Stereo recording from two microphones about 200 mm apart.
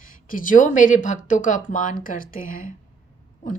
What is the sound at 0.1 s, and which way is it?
A woman's voice, 45° left (ahead or behind).